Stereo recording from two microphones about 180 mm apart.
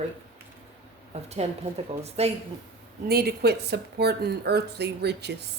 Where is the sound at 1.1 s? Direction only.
35° right (ahead or behind).